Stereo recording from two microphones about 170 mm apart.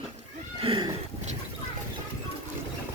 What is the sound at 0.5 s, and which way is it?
Horse, 30° right (ahead or behind).